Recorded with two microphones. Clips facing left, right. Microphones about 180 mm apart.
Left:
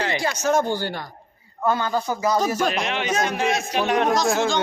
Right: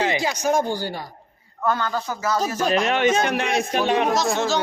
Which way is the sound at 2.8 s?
45° right (ahead or behind).